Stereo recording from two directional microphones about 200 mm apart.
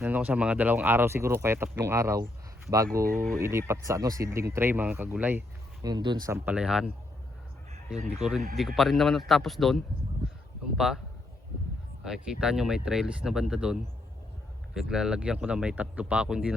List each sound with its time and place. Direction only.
0.0 s speech: 10° right (ahead or behind)
3.0 s speech: 45° right (ahead or behind)
3.3 s speech: 15° right (ahead or behind)
5.8 s speech: 20° right (ahead or behind); by 6.9 s 5° right (ahead or behind)
8.1 s speech: centre (ahead or behind)
12.0 s speech: 5° right (ahead or behind)